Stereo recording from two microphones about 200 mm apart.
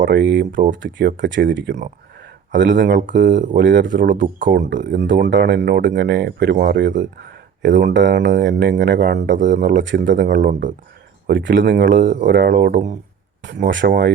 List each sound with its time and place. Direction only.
0.1 s speech: 60° right (ahead or behind)
0.5 s speech: 40° right (ahead or behind)
0.8 s speech: 65° right (ahead or behind)
3.2 s speech: 40° right (ahead or behind)
3.6 s speech: 65° right (ahead or behind)
4.4 s speech: 40° right (ahead or behind)
4.9 s speech: 65° right (ahead or behind)
7.0 s a sound: 60° right (ahead or behind)
7.9 s speech: 60° right (ahead or behind)
9.3 s speech: 40° right (ahead or behind)
9.7 s speech: 60° right (ahead or behind)
10.2 s speech: 40° right (ahead or behind)
11.3 s speech: 60° right (ahead or behind)
13.4 s speech: 60° right (ahead or behind)